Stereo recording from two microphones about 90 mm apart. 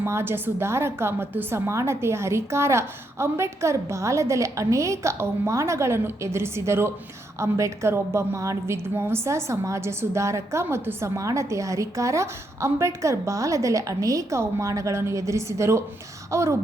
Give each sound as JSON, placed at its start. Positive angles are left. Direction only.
{"t": 0.0, "sound": "a woman's voice", "side_deg": -30}